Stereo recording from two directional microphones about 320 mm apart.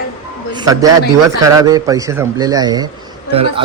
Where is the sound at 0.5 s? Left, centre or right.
Centre.